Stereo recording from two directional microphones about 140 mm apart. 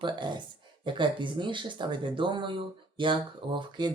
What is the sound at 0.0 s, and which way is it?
Speech, 35° right (ahead or behind).